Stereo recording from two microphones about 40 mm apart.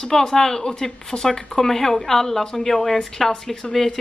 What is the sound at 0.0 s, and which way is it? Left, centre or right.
Speech, centre.